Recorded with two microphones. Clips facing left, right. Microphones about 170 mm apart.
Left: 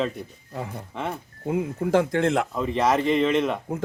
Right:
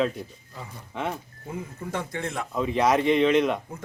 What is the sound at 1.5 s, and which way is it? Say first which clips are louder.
Speech: left 11 dB; 70° left (ahead or behind).